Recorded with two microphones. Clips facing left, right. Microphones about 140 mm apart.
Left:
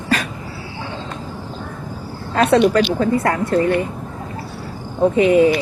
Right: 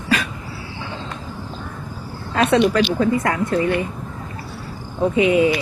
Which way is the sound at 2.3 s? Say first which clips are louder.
Left 3 dB; 40° left (ahead or behind).